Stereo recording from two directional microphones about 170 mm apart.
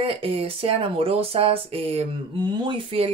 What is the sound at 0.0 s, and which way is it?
Speech, 35° right (ahead or behind).